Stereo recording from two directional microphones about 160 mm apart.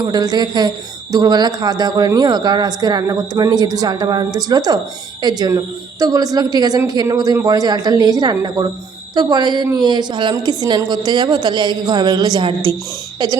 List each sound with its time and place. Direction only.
0.0 s speech: 25° right (ahead or behind)